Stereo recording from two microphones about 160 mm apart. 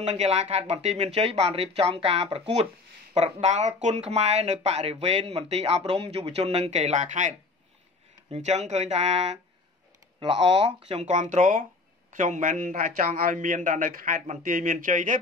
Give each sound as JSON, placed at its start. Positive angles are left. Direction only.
{"t": 0.0, "sound": "a man's voice", "side_deg": -45}
{"t": 10.2, "sound": "a man's voice", "side_deg": -35}